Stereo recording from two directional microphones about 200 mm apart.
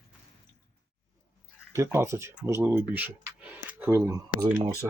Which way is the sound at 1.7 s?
15° right (ahead or behind).